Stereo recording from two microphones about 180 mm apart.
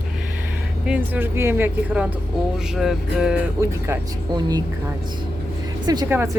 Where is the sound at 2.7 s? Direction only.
Centre (ahead or behind).